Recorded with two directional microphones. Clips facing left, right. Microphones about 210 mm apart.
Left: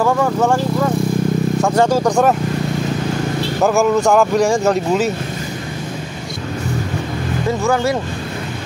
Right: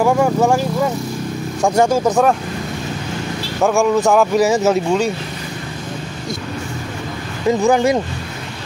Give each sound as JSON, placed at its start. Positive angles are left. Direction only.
{"t": 0.0, "sound": "speech", "side_deg": -10}
{"t": 1.6, "sound": "speech", "side_deg": -10}
{"t": 3.6, "sound": "speech", "side_deg": 0}
{"t": 7.6, "sound": "speech", "side_deg": -15}